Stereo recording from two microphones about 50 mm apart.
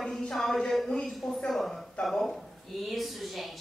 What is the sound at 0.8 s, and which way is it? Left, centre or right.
Speech, centre.